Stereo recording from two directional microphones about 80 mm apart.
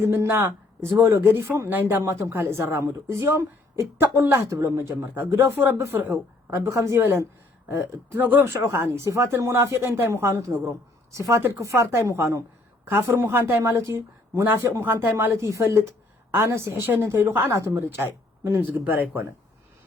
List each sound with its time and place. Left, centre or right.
0.0 s speech: right